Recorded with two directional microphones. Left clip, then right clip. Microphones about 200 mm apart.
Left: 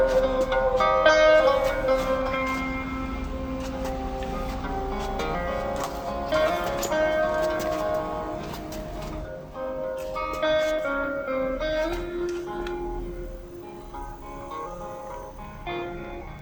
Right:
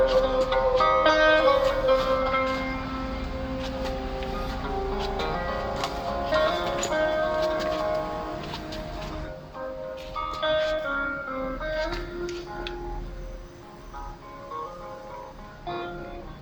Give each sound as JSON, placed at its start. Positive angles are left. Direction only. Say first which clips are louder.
{"t": 0.0, "sound": "music", "louder": "even", "side_deg": 15}
{"t": 5.1, "sound": "music", "louder": "left 1 dB", "side_deg": 20}
{"t": 10.2, "sound": "music", "louder": "left 1 dB", "side_deg": 30}